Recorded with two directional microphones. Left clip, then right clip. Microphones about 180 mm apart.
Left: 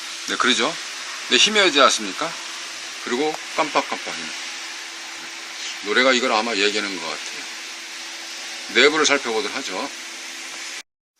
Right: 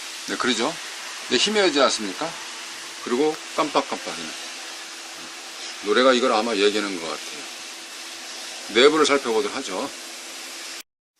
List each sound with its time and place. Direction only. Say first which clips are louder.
0.3 s a man's voice: left 4 dB; 5° right (ahead or behind)
5.9 s a man's voice: even; 15° right (ahead or behind)
8.7 s a man's voice: even; 15° right (ahead or behind)